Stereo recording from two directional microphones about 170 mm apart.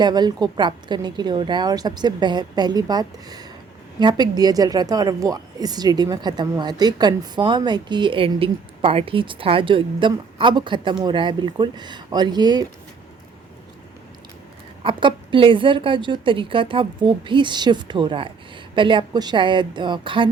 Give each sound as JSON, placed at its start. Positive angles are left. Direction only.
{"t": 0.0, "sound": "a woman's voice", "side_deg": -25}
{"t": 14.8, "sound": "a woman's voice", "side_deg": -30}